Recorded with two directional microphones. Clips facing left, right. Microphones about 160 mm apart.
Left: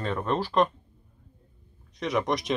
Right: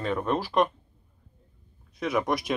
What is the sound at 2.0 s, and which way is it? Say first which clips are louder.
Speech: even; 5° right (ahead or behind).